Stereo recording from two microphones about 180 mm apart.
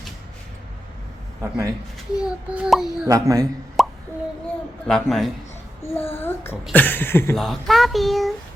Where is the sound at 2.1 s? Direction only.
5° right (ahead or behind).